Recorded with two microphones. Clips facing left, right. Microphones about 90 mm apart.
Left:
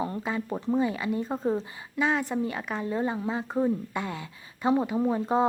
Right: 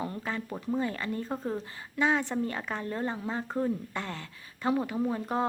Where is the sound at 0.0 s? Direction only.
20° left (ahead or behind).